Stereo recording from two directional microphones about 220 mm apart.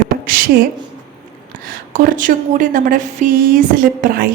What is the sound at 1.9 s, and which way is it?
A woman's voice, 40° right (ahead or behind).